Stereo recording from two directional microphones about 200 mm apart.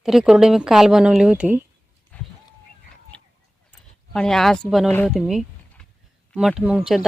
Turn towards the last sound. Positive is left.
turn(degrees=0)  # may be behind; listen again after turning